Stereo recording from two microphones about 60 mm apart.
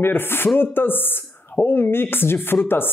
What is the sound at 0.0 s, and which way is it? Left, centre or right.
Speech, left.